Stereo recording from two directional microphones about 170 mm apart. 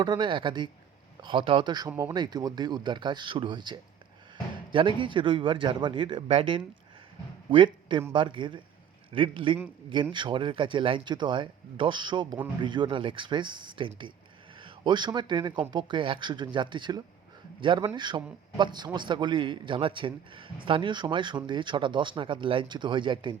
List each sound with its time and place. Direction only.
0.0 s a man's voice: 25° right (ahead or behind)